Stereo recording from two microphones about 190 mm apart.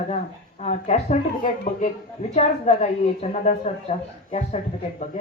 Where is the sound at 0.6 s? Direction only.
35° left (ahead or behind).